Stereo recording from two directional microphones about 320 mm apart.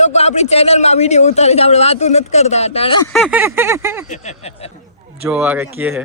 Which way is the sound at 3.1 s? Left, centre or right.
Centre.